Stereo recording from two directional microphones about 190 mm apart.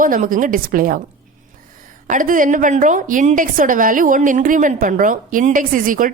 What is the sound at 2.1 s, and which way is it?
A woman's voice, 45° right (ahead or behind).